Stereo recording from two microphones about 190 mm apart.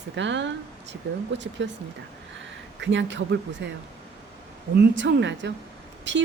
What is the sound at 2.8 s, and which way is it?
Speech, 70° right (ahead or behind).